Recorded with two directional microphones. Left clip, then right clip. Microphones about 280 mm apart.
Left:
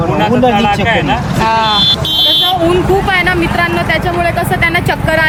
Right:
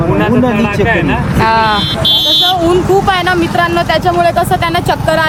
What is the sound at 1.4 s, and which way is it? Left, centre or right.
Speech, centre.